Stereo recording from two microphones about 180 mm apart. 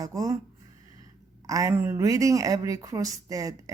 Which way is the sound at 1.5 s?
20° right (ahead or behind).